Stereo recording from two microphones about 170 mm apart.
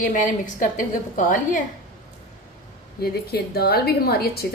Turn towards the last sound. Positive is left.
turn(degrees=65)  # may be behind; listen again after turning